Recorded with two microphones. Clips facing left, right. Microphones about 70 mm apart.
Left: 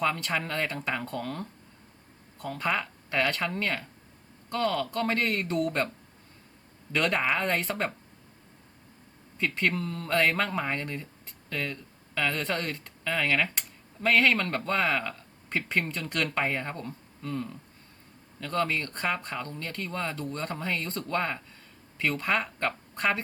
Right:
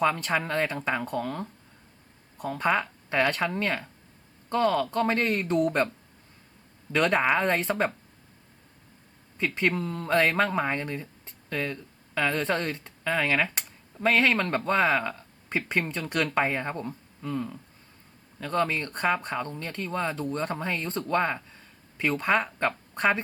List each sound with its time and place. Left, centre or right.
0.0 s speech: centre
7.2 s speech: centre
9.4 s speech: centre